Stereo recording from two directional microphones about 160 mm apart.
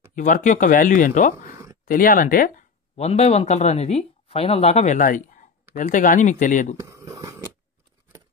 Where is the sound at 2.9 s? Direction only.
40° left (ahead or behind).